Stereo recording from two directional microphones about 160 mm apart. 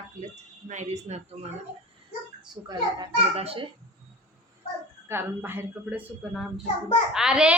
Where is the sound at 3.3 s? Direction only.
40° right (ahead or behind).